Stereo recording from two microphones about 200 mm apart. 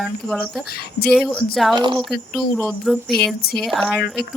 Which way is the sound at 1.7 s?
20° right (ahead or behind).